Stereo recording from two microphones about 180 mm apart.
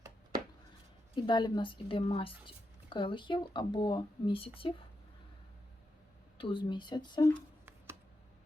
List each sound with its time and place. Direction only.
1.1 s speech: 25° left (ahead or behind)
6.3 s speech: 30° left (ahead or behind)